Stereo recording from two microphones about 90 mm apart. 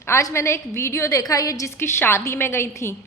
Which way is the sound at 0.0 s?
35° left (ahead or behind).